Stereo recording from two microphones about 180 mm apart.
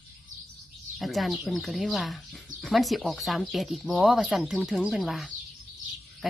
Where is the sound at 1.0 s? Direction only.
Centre (ahead or behind).